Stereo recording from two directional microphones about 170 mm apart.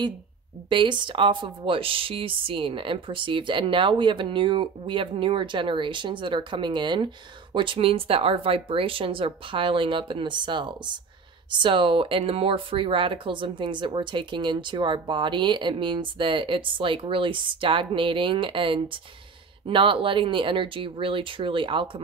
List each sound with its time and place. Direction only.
0.7 s speech: 30° right (ahead or behind)